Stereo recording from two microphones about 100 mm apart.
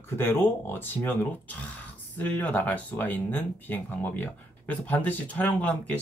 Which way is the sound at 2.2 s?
15° left (ahead or behind).